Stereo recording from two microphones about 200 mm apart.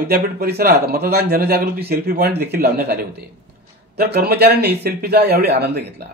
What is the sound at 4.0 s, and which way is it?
Speech, 50° right (ahead or behind).